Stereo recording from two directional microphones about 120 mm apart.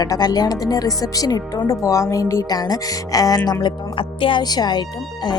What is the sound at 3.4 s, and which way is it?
Speech, 35° left (ahead or behind).